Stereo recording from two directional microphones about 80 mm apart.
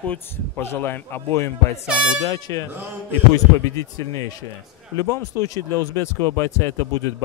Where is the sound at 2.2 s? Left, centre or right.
Left.